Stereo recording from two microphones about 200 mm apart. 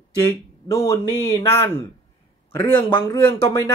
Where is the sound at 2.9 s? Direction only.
20° left (ahead or behind).